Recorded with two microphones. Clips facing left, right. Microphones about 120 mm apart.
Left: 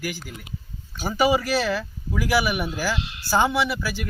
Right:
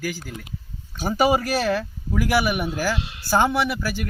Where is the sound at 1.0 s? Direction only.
50° right (ahead or behind).